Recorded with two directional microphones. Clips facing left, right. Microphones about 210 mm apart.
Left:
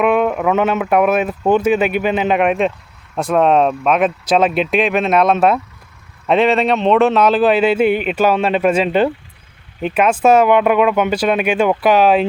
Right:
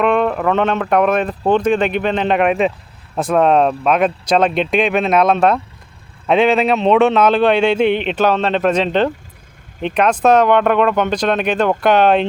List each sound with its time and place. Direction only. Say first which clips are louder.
0.0 s a man's voice: left 1 dB; 5° left (ahead or behind)